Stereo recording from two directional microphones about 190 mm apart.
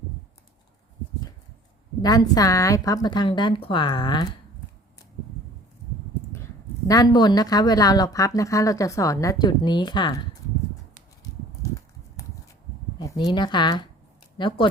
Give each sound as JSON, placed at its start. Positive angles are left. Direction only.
{"t": 2.0, "sound": "speech", "side_deg": 20}
{"t": 6.8, "sound": "speech", "side_deg": 20}
{"t": 12.2, "sound": "a sound", "side_deg": 15}
{"t": 13.0, "sound": "speech", "side_deg": 20}